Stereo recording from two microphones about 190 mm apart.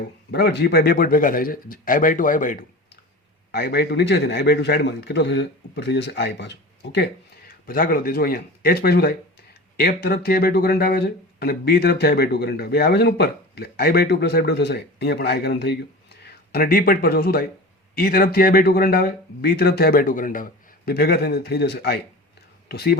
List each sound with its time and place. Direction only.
0.3 s speech: 60° left (ahead or behind)
3.5 s speech: 60° left (ahead or behind)